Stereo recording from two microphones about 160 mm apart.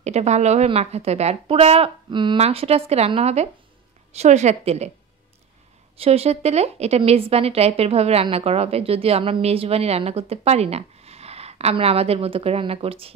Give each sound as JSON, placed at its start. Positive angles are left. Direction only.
{"t": 0.0, "sound": "a woman's voice", "side_deg": -45}
{"t": 5.9, "sound": "a woman's voice", "side_deg": -40}